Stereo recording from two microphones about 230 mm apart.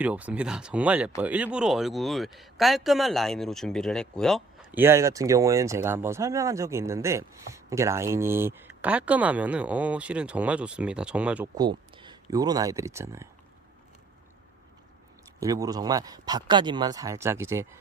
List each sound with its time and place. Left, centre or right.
0.0 s speech: centre
4.8 s speech: centre
11.5 s speech: centre
15.4 s speech: centre